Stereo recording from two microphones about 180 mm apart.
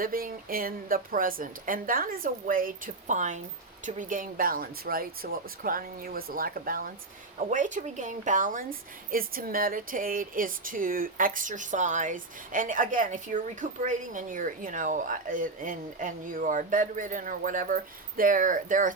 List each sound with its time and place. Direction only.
0.0 s speech: 55° right (ahead or behind)